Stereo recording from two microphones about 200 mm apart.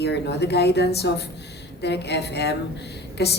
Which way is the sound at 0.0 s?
55° left (ahead or behind).